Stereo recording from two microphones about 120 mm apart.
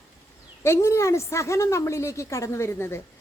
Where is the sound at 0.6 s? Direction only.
25° left (ahead or behind).